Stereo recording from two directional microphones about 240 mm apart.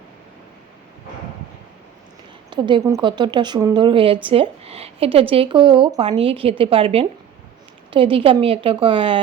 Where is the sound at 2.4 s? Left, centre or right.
Centre.